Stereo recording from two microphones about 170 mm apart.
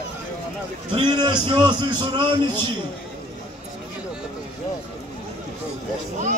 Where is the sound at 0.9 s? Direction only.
25° right (ahead or behind).